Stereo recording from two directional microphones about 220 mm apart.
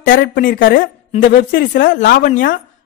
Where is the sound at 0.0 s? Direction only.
45° left (ahead or behind).